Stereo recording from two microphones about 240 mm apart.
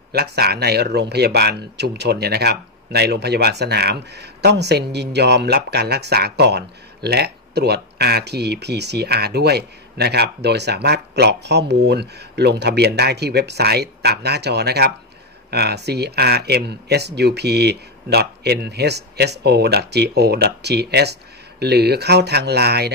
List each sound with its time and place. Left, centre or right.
0.1 s speech: right